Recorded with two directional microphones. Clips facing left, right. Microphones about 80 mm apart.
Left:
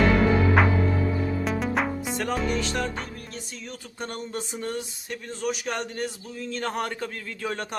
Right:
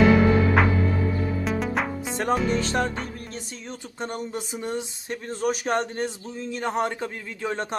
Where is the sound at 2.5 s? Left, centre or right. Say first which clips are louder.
Right 3 dB; right.